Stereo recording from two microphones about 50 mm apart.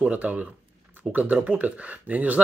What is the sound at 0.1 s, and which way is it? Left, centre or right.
Speech, right.